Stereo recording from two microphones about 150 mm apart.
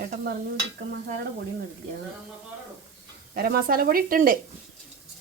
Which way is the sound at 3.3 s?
85° right.